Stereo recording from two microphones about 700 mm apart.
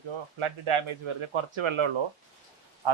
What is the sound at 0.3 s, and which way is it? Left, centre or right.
Speech, right.